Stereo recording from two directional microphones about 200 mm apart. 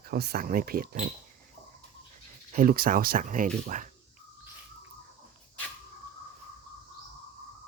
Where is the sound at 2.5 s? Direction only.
45° right (ahead or behind).